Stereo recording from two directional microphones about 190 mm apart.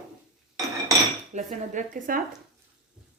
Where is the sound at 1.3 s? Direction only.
40° right (ahead or behind).